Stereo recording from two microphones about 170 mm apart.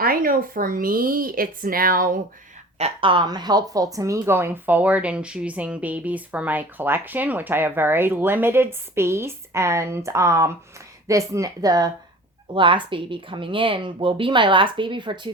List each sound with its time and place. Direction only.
0.0 s a woman's voice: 60° right (ahead or behind)
2.7 s a woman's voice: 35° right (ahead or behind)